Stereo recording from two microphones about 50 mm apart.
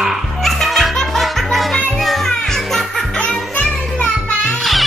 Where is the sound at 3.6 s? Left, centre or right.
Left.